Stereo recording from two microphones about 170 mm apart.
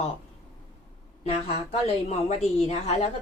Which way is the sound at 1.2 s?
35° left (ahead or behind).